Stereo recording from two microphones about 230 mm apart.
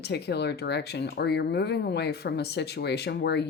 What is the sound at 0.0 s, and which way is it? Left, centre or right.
Speech, left.